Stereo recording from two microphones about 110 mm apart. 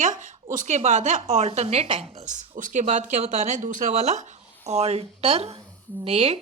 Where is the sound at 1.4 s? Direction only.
75° right (ahead or behind).